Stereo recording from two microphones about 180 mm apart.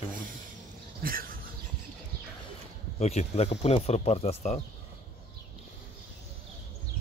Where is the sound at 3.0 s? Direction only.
35° left (ahead or behind).